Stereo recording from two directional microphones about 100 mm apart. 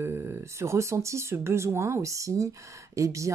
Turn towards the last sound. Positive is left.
turn(degrees=-30)  # may be behind; listen again after turning